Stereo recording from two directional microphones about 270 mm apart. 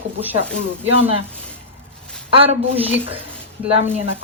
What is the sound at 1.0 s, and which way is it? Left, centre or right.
Speech, right.